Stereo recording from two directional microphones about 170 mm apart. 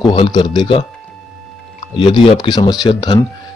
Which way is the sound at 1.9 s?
30° left (ahead or behind).